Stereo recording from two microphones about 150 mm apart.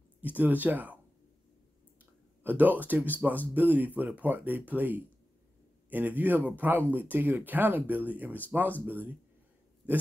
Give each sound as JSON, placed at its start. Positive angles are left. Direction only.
{"t": 0.4, "sound": "speech", "side_deg": -10}
{"t": 2.4, "sound": "speech", "side_deg": -10}